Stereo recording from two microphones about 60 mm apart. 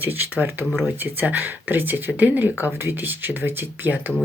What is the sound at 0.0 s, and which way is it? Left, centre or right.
Speech, right.